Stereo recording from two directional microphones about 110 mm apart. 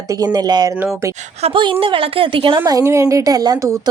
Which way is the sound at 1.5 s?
50° right (ahead or behind).